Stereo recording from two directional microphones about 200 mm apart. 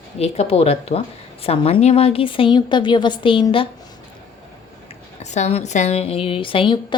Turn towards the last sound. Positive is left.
turn(degrees=25)  # may be behind; listen again after turning